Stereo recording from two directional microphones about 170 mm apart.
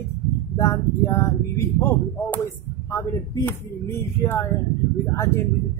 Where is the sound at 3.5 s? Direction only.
15° left (ahead or behind).